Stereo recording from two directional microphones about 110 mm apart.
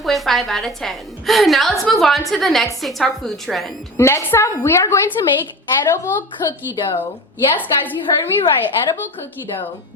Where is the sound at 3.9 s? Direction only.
25° left (ahead or behind).